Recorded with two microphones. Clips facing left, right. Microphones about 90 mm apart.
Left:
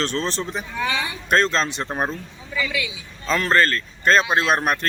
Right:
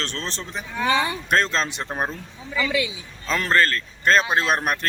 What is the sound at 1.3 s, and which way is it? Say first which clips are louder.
Speech: left 5 dB; 5° right (ahead or behind).